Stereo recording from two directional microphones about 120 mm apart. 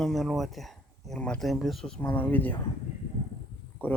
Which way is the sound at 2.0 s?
15° left (ahead or behind).